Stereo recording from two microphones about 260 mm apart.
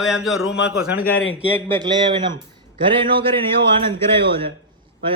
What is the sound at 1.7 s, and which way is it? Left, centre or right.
A man's voice, centre.